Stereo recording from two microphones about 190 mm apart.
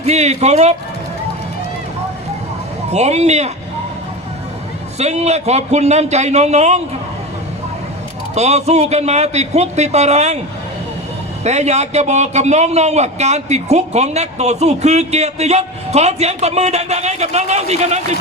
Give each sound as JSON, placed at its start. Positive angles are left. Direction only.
{"t": 0.0, "sound": "a man's voice", "side_deg": -35}
{"t": 2.9, "sound": "a man's voice", "side_deg": -35}
{"t": 4.9, "sound": "a man's voice", "side_deg": -35}
{"t": 8.4, "sound": "a man's voice", "side_deg": -35}
{"t": 11.4, "sound": "a man's voice", "side_deg": -35}